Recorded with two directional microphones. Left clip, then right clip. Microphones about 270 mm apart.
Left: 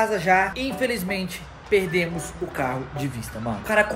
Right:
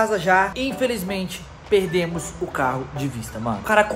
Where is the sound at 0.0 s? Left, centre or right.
Centre.